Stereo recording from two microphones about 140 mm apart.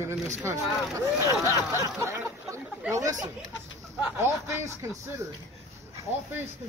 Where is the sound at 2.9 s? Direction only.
25° right (ahead or behind).